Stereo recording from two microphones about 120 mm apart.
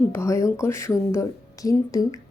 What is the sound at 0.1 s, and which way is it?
A woman's voice, 25° left (ahead or behind).